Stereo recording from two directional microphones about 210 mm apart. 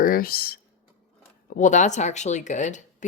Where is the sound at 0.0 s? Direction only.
45° left (ahead or behind).